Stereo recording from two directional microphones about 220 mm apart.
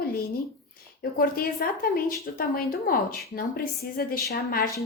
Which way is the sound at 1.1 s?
40° left (ahead or behind).